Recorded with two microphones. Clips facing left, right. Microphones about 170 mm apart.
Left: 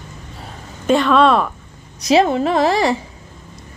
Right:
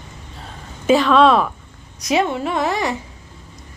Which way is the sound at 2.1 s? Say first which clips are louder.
Left 5 dB; 35° left (ahead or behind).